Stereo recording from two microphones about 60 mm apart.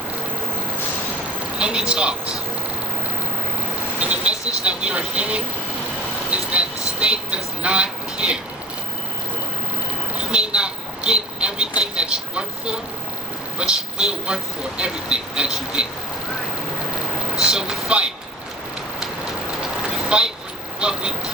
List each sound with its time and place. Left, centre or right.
1.5 s speech: centre
4.0 s speech: right
10.3 s speech: centre
17.4 s speech: centre
20.1 s speech: centre